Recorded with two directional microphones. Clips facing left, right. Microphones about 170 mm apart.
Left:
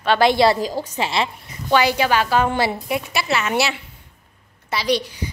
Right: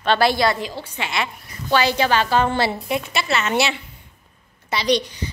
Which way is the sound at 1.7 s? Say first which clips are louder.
Left 1 dB; 15° left (ahead or behind).